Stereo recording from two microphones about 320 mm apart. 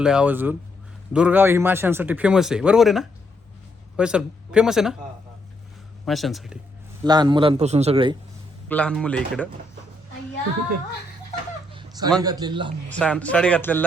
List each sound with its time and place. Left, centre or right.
0.0 s speech: centre
6.1 s speech: centre
7.0 s a man's voice: centre
8.7 s speech: centre
11.7 s a sound: centre
12.2 s a man's voice: centre
12.9 s speech: centre